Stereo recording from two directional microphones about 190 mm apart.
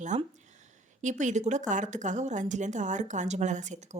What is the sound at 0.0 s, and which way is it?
Speech, 40° right (ahead or behind).